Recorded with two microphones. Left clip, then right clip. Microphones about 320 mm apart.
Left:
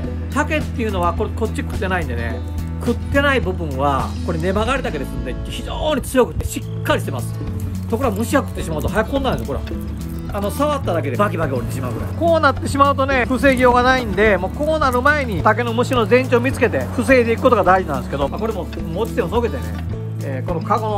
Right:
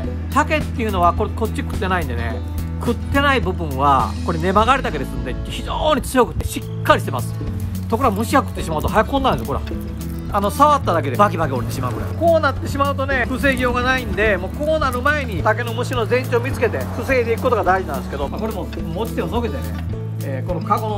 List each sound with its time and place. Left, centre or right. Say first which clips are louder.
0.3 s speech: right 2 dB; centre
12.3 s speech: left 1 dB; centre
18.9 s speech: left 4 dB; centre
20.5 s speech: left 1 dB; centre